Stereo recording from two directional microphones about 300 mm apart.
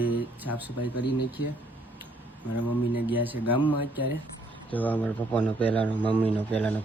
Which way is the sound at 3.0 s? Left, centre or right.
Centre.